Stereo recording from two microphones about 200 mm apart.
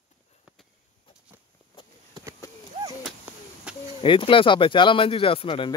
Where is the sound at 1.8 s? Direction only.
25° left (ahead or behind).